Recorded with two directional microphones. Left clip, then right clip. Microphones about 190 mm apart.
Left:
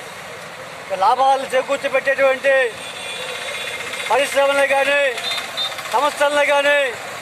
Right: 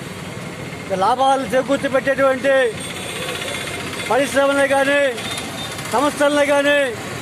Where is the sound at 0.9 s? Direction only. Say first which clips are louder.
Left 1 dB; 10° left (ahead or behind).